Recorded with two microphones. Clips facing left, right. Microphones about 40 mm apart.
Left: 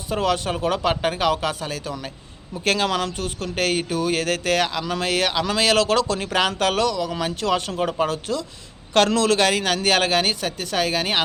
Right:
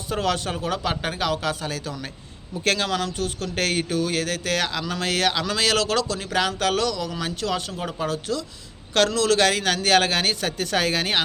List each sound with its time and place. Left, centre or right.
0.1 s speech: centre
3.5 s speech: centre
4.7 s a man's voice: centre